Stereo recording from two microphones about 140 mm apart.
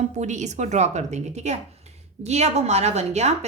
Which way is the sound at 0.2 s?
55° right (ahead or behind).